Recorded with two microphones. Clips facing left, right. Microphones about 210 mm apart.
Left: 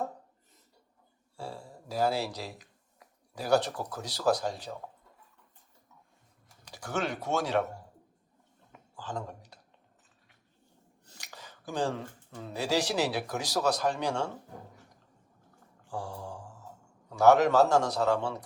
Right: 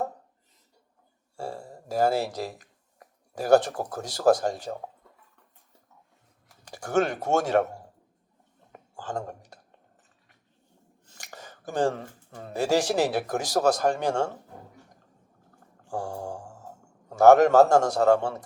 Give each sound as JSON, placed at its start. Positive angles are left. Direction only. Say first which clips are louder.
{"t": 1.4, "sound": "speech", "louder": "right 5 dB", "side_deg": -45}
{"t": 6.7, "sound": "speech", "louder": "right 8 dB", "side_deg": -50}
{"t": 8.7, "sound": "a sound", "louder": "right 5 dB", "side_deg": -50}
{"t": 11.2, "sound": "speech", "louder": "right 5 dB", "side_deg": -45}
{"t": 15.9, "sound": "speech", "louder": "right 6 dB", "side_deg": -45}